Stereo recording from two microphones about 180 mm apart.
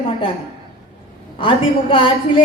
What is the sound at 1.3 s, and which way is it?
A woman's voice, 30° left (ahead or behind).